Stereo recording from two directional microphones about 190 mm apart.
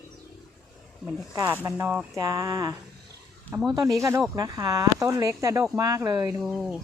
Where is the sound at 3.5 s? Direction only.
5° left (ahead or behind).